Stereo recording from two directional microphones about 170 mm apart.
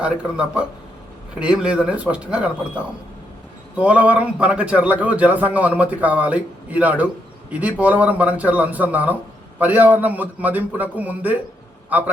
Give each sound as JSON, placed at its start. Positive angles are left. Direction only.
{"t": 0.0, "sound": "a man's voice", "side_deg": -5}